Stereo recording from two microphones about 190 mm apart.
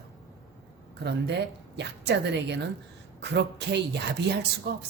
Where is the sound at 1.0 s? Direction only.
65° right (ahead or behind).